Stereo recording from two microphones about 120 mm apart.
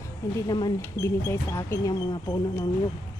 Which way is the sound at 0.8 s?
25° left (ahead or behind).